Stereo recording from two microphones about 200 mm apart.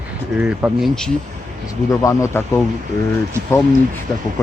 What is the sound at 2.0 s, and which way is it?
Speech, 15° left (ahead or behind).